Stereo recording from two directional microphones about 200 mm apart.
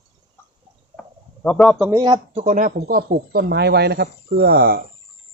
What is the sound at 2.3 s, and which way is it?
Speech, 40° right (ahead or behind).